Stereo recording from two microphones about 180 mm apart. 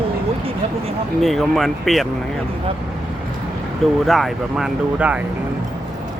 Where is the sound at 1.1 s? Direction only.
Centre (ahead or behind).